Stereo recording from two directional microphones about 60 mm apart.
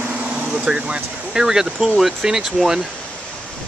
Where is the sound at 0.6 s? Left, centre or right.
Centre.